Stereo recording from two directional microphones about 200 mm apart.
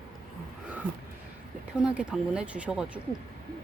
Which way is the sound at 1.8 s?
5° right (ahead or behind).